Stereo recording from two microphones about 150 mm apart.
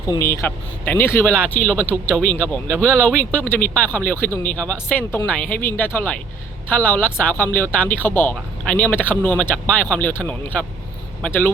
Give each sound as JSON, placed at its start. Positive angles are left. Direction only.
{"t": 0.1, "sound": "speech", "side_deg": 20}
{"t": 1.3, "sound": "speech", "side_deg": -15}
{"t": 1.6, "sound": "speech", "side_deg": 10}